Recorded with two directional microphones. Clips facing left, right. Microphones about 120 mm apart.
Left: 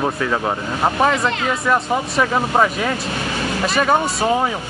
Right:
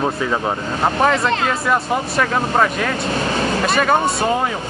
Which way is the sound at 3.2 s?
40° right (ahead or behind).